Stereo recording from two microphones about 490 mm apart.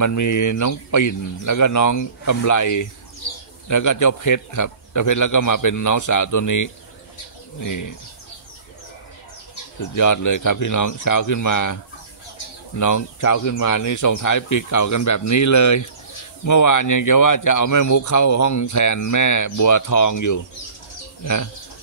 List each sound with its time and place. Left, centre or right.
0.0 s speech: left
9.8 s speech: left